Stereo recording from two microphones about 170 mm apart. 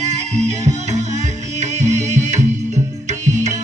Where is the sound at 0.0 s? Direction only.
40° right (ahead or behind).